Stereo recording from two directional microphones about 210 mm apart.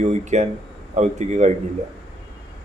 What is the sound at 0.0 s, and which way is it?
Speech, 35° right (ahead or behind).